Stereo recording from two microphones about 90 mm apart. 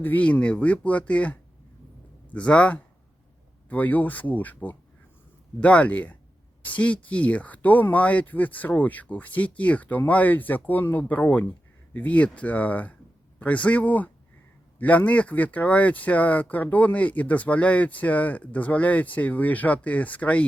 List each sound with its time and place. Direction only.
0.0 s speech: 20° left (ahead or behind)